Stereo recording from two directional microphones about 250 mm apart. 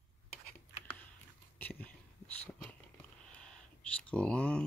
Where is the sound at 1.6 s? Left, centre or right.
Centre.